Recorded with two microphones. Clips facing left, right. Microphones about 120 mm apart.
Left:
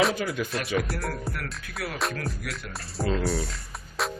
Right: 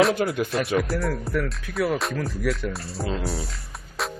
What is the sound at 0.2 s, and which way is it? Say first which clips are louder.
Speech: right 5 dB; 55° right (ahead or behind).